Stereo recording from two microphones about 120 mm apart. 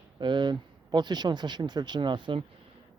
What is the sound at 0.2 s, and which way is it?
Speech, 40° right (ahead or behind).